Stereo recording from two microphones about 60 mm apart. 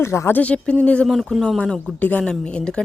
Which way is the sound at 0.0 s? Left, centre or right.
Left.